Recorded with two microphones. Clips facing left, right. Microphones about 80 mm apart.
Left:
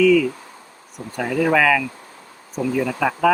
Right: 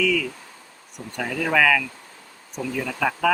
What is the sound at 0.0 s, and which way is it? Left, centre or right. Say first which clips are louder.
A man's voice: left 8 dB; centre.